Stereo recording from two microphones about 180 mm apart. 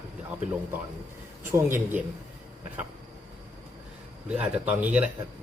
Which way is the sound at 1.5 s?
15° right (ahead or behind).